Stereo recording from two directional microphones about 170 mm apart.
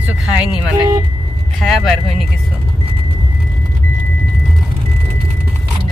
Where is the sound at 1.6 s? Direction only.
Centre (ahead or behind).